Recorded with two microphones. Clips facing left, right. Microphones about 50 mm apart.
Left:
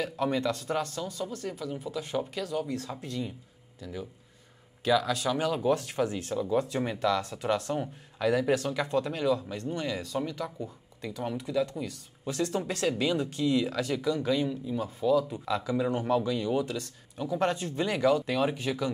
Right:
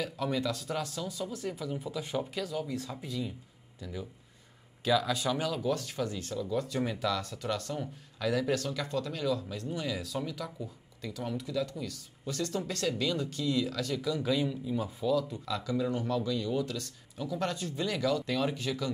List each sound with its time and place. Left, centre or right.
0.0 s speech: centre
0.8 s speech: centre
2.9 s speech: centre
3.8 s speech: centre
5.0 s speech: centre
5.4 s speech: left
7.4 s speech: left
9.5 s speech: centre
11.0 s speech: centre
14.1 s speech: centre
15.0 s speech: centre
16.5 s speech: centre